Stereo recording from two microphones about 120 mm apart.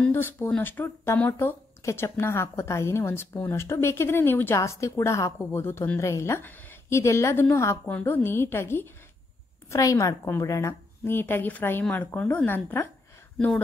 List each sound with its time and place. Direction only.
0.0 s speech: 20° left (ahead or behind)